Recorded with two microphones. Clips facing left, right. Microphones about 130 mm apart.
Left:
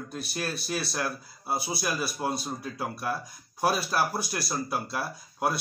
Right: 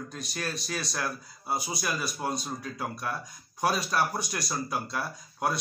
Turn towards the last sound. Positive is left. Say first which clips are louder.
# left 1 dB
turn(degrees=5)  # may be behind; listen again after turning